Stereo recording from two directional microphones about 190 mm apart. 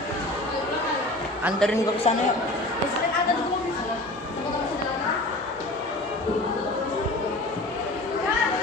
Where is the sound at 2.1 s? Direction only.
30° left (ahead or behind).